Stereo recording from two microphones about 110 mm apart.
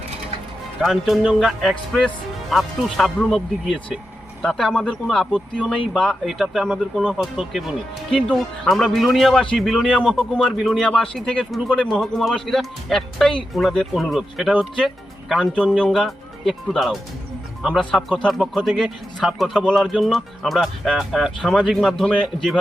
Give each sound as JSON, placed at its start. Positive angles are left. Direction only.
{"t": 0.8, "sound": "a man's voice", "side_deg": 0}
{"t": 18.2, "sound": "a man's voice", "side_deg": 0}